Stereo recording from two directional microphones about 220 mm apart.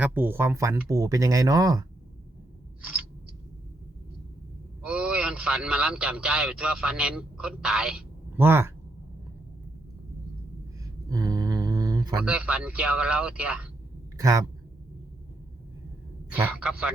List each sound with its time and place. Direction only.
0.0 s speech: 10° right (ahead or behind)
4.9 s a man's voice: 5° right (ahead or behind)
11.1 s mantra: 15° right (ahead or behind)
12.2 s a man's voice: 5° right (ahead or behind)
16.3 s speech: 5° right (ahead or behind)